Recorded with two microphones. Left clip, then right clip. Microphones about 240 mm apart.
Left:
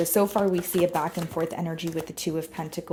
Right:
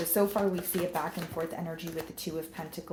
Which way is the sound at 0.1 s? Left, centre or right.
Left.